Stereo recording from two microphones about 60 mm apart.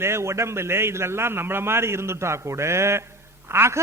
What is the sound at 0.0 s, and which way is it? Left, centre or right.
A man's voice, right.